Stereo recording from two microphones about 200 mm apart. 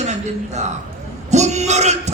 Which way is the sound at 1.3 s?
35° right (ahead or behind).